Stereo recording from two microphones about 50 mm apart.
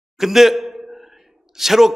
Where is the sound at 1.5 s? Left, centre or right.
Centre.